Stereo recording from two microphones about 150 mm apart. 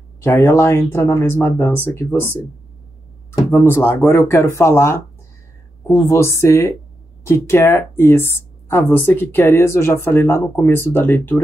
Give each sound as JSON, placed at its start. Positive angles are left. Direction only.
{"t": 0.2, "sound": "speech", "side_deg": 20}
{"t": 3.5, "sound": "speech", "side_deg": 15}
{"t": 6.0, "sound": "speech", "side_deg": 15}